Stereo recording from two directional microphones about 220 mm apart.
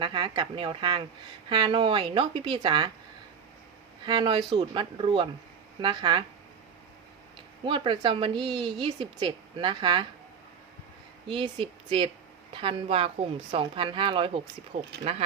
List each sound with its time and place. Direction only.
0.0 s a woman's voice: 20° right (ahead or behind)
4.0 s a woman's voice: 20° right (ahead or behind)
7.6 s a woman's voice: 20° right (ahead or behind)
11.3 s a woman's voice: 20° right (ahead or behind)